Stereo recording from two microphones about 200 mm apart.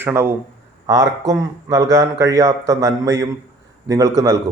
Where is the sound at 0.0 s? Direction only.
10° right (ahead or behind).